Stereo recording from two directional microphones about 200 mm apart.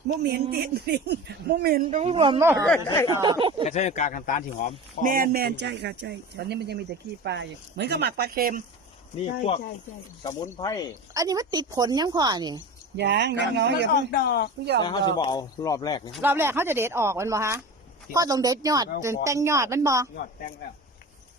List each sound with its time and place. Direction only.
0.2 s speech: 55° right (ahead or behind)
2.0 s a woman's voice: 30° right (ahead or behind)
2.4 s speech: 15° right (ahead or behind)
2.8 s speech: 15° left (ahead or behind)
3.1 s a woman's voice: 20° right (ahead or behind)
3.6 s speech: 35° left (ahead or behind)
5.0 s speech: 45° right (ahead or behind)
9.2 s speech: 35° left (ahead or behind)
10.4 s speech: 15° left (ahead or behind)
11.1 s a woman's voice: 20° right (ahead or behind)
13.0 s speech: 60° right (ahead or behind)
14.1 s speech: 50° left (ahead or behind)
14.8 s speech: 25° left (ahead or behind)
16.2 s speech: 10° right (ahead or behind)